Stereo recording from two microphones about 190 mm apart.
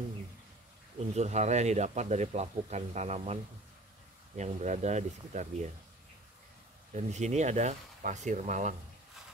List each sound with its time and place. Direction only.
0.9 s speech: 35° right (ahead or behind)
4.4 s speech: 40° right (ahead or behind)
6.9 s speech: 35° right (ahead or behind)